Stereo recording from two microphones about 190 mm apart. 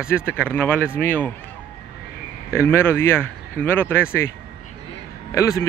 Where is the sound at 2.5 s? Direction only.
15° left (ahead or behind).